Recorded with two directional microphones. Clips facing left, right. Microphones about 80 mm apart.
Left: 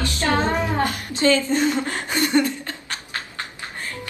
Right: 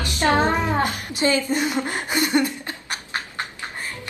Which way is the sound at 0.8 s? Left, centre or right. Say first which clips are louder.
Left 3 dB; centre.